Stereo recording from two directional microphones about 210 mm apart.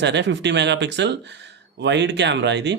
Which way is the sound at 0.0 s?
55° right (ahead or behind).